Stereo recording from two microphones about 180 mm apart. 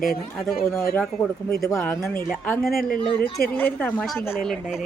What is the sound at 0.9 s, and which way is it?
Speech, 5° left (ahead or behind).